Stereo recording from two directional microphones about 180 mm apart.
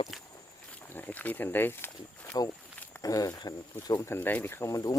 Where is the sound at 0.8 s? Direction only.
10° left (ahead or behind).